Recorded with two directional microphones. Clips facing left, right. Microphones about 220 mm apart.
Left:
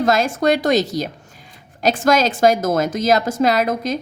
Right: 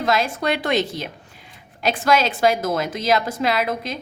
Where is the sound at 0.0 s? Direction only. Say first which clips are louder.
Left 5 dB; 45° left (ahead or behind).